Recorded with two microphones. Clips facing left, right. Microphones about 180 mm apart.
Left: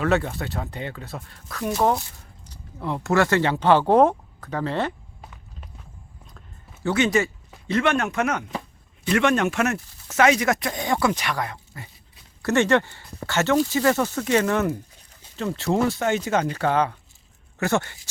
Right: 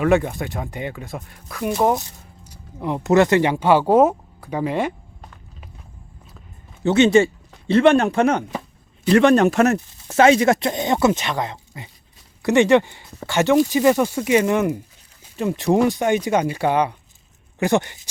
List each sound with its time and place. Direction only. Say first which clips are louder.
0.0 s speech: right 5 dB; 15° right (ahead or behind)
5.2 s walk: even; 5° left (ahead or behind)
6.8 s speech: right 7 dB; 25° right (ahead or behind)